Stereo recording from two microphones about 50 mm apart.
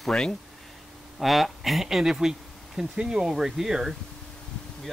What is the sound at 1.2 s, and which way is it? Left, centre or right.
Speech, centre.